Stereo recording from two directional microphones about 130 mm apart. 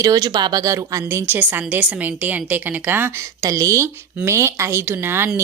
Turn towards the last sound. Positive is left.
turn(degrees=-20)  # may be behind; listen again after turning